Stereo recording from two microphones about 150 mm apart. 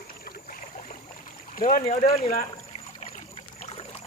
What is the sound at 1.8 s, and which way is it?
Speech, 50° left (ahead or behind).